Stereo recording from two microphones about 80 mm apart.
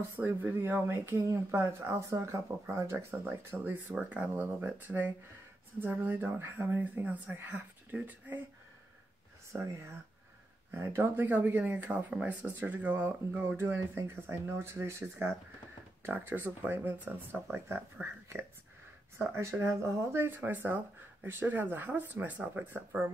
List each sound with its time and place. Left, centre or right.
0.1 s speech: right
4.1 s speech: right
6.8 s speech: centre
9.5 s speech: right
11.2 s speech: right
19.1 s speech: right